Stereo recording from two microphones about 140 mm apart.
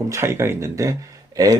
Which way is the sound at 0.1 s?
20° right (ahead or behind).